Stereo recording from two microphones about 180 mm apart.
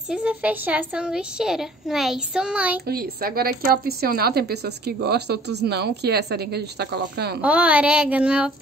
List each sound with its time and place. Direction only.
0.1 s a woman's voice: 10° right (ahead or behind)
2.9 s a woman's voice: 55° right (ahead or behind)
7.4 s child singing: 10° right (ahead or behind)